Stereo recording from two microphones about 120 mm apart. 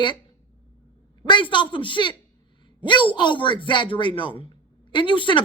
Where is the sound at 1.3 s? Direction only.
40° left (ahead or behind).